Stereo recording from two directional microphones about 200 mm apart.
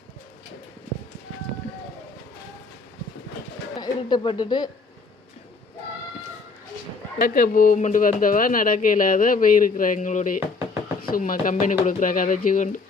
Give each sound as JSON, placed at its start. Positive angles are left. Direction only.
{"t": 3.8, "sound": "speech", "side_deg": 25}
{"t": 7.2, "sound": "speech", "side_deg": 45}